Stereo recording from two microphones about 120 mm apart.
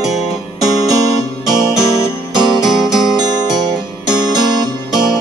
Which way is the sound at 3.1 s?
35° right (ahead or behind).